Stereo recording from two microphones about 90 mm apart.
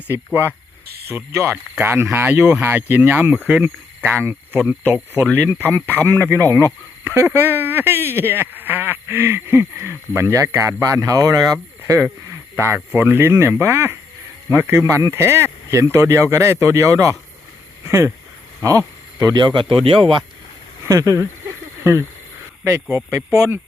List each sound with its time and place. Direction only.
1.0 s speech: 30° right (ahead or behind)
6.3 s speech: 35° right (ahead or behind); by 20.2 s 70° right (ahead or behind)
20.8 s speech: 35° right (ahead or behind)
22.7 s speech: 25° right (ahead or behind)